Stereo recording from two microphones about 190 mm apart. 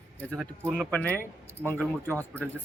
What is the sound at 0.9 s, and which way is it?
Speech, 5° left (ahead or behind).